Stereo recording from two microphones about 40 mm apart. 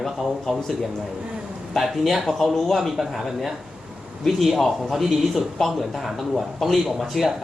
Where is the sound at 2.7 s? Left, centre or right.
Centre.